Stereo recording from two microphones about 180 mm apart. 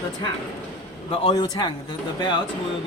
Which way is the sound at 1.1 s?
30° left (ahead or behind).